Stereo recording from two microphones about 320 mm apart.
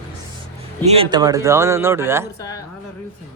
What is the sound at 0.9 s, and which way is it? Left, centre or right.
A man's voice, centre.